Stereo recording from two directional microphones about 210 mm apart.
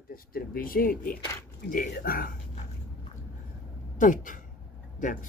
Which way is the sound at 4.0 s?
40° left (ahead or behind).